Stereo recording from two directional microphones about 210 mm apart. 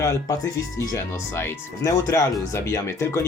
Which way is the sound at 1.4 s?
10° left (ahead or behind).